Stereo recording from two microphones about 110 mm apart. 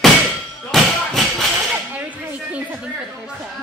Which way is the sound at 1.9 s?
15° right (ahead or behind).